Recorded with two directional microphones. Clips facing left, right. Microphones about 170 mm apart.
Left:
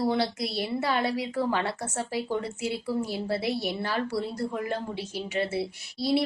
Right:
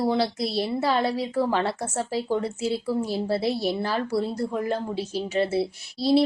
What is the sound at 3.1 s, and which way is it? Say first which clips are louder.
A woman's voice: right 4 dB; 30° right (ahead or behind).